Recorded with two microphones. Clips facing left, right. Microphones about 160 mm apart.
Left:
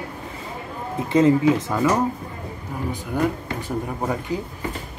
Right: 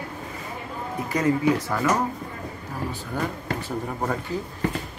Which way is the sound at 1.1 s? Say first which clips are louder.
Left 5 dB; 25° left (ahead or behind).